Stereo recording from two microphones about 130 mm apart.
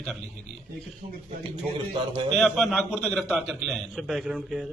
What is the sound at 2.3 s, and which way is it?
A man's voice, centre (ahead or behind).